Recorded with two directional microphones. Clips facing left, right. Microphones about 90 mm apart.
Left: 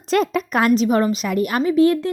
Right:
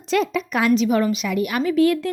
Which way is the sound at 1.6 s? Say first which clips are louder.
Left 2 dB; 25° left (ahead or behind).